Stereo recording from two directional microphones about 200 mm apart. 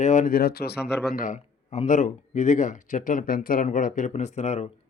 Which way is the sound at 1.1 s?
40° left (ahead or behind).